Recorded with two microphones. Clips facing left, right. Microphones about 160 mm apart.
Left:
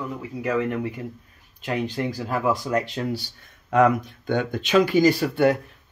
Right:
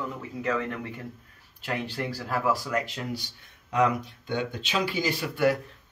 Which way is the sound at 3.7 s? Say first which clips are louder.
Left 6 dB; 50° left (ahead or behind).